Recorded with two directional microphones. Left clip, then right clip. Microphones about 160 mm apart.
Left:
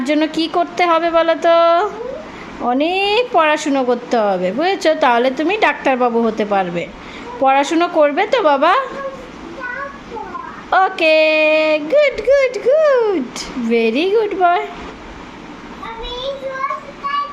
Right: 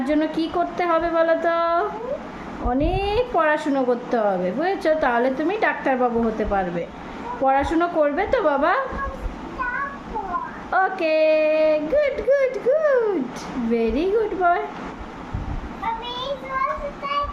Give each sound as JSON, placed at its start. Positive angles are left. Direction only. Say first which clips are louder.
{"t": 0.0, "sound": "a woman's voice", "louder": "left 5 dB", "side_deg": 25}
{"t": 10.7, "sound": "a woman's voice", "louder": "left 8 dB", "side_deg": 25}